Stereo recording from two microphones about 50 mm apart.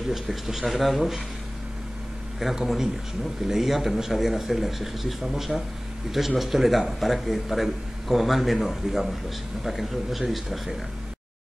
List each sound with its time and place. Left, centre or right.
0.1 s a man's voice: centre
2.4 s a man's voice: centre